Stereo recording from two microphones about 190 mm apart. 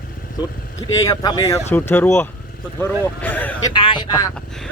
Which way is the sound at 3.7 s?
25° left (ahead or behind).